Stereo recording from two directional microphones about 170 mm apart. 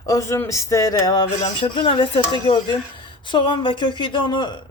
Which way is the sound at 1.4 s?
35° left (ahead or behind).